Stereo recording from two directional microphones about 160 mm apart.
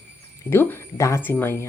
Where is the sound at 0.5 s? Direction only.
15° left (ahead or behind).